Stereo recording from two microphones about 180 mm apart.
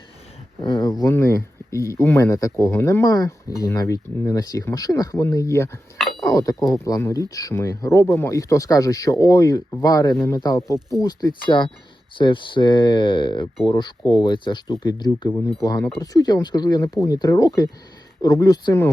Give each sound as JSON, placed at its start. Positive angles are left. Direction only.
{"t": 0.6, "sound": "speech", "side_deg": 25}
{"t": 10.8, "sound": "speech", "side_deg": 0}
{"t": 11.0, "sound": "speech", "side_deg": 25}
{"t": 15.3, "sound": "speech", "side_deg": 10}
{"t": 16.0, "sound": "speech", "side_deg": 20}